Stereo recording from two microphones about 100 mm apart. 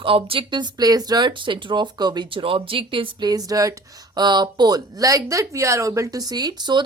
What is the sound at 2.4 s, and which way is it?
Speech, 65° right (ahead or behind).